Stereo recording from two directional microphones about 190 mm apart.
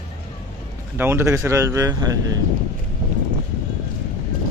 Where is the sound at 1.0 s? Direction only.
15° right (ahead or behind).